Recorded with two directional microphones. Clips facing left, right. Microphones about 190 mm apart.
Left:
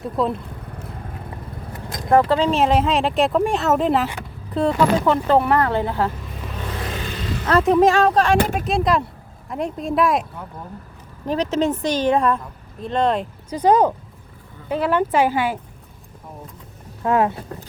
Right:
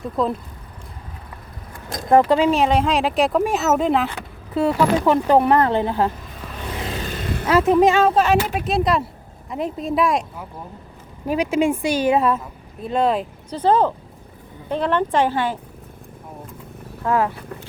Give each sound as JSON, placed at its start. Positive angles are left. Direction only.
{"t": 0.0, "sound": "speech", "side_deg": 0}
{"t": 2.0, "sound": "a woman's voice", "side_deg": -15}
{"t": 2.5, "sound": "speech", "side_deg": 0}
{"t": 5.0, "sound": "speech", "side_deg": -15}
{"t": 6.9, "sound": "vehicle", "side_deg": -50}
{"t": 7.4, "sound": "speech", "side_deg": -5}
{"t": 11.3, "sound": "a woman's voice", "side_deg": -10}
{"t": 13.5, "sound": "a woman's voice", "side_deg": 15}
{"t": 17.0, "sound": "speech", "side_deg": 20}